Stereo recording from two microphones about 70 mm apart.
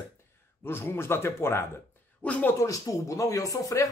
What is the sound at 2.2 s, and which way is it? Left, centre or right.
Speech, centre.